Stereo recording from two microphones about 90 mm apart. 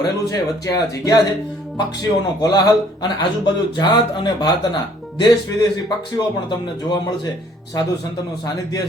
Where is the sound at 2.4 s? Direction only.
50° left (ahead or behind).